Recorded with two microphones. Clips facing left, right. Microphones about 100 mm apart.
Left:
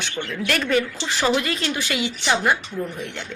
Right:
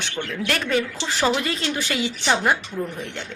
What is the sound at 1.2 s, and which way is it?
Speech, 30° right (ahead or behind).